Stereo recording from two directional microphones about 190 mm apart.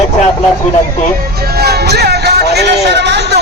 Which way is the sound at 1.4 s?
55° right (ahead or behind).